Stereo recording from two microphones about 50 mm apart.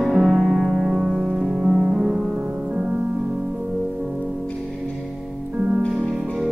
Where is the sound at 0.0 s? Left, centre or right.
Centre.